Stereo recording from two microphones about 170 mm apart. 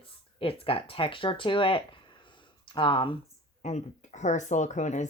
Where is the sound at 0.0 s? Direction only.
35° left (ahead or behind).